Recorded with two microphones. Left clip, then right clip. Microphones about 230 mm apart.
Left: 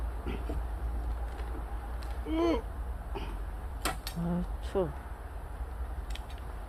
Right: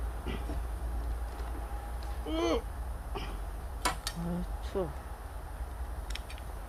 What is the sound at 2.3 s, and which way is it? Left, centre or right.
Speech, right.